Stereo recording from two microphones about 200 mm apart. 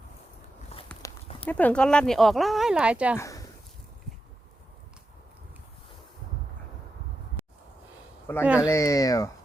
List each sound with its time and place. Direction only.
1.5 s speech: 10° left (ahead or behind)
3.2 s speech: 15° left (ahead or behind)
8.4 s speech: 5° right (ahead or behind)
8.7 s speech: 15° left (ahead or behind)